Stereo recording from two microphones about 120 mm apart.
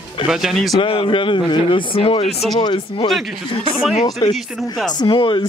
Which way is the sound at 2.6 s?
40° left (ahead or behind).